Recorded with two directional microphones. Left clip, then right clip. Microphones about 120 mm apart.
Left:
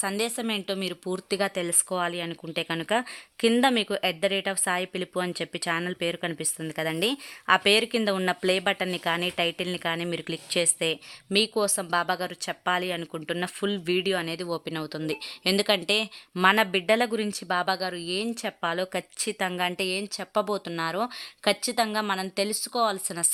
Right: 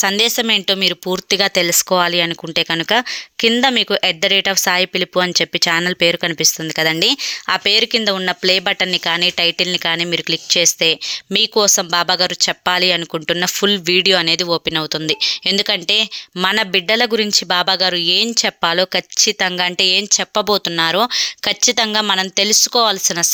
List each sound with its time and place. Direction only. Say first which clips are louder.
0.0 s speech: right 14 dB; 35° right (ahead or behind)
3.4 s speech: right 8 dB; 20° right (ahead or behind)
18.9 s speech: right 14 dB; 20° right (ahead or behind)